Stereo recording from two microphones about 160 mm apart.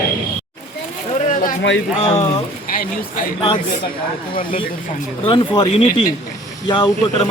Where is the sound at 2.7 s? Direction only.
60° left (ahead or behind).